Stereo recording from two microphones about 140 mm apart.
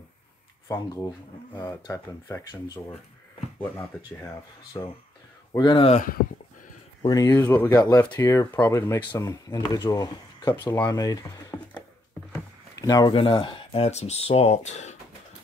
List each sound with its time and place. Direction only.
0.7 s speech: 25° left (ahead or behind)
5.6 s speech: 35° left (ahead or behind)
7.0 s speech: 30° left (ahead or behind)
7.8 s speech: 30° left (ahead or behind)
9.1 s speech: 25° left (ahead or behind)
10.5 s speech: 15° left (ahead or behind)
10.9 s speech: 25° left (ahead or behind)
12.7 s speech: 25° left (ahead or behind)
13.1 s speech: 40° left (ahead or behind)